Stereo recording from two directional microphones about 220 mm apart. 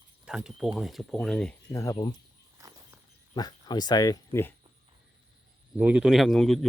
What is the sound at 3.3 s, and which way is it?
Speech, 20° left (ahead or behind).